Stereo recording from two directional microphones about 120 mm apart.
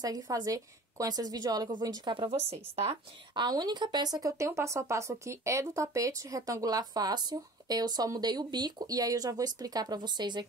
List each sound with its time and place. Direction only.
0.0 s speech: 30° right (ahead or behind)
2.1 s a woman's voice: 50° right (ahead or behind)
3.3 s speech: 35° right (ahead or behind)